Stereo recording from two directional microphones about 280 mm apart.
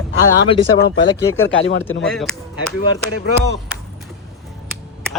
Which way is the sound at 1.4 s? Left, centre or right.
Left.